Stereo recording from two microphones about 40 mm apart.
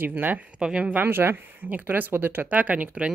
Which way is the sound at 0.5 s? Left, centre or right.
Right.